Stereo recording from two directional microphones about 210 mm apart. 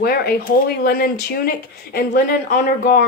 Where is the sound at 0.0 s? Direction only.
45° left (ahead or behind).